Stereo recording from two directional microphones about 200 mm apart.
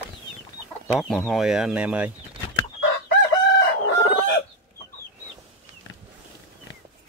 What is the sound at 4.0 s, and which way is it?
Chicken, 25° left (ahead or behind).